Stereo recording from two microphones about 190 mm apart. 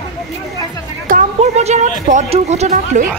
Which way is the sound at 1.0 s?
40° right (ahead or behind).